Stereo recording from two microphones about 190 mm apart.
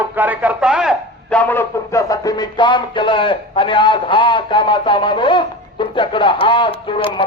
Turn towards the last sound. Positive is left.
turn(degrees=30)  # may be behind; listen again after turning